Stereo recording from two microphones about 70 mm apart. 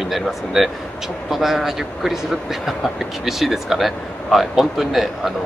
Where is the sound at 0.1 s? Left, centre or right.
Centre.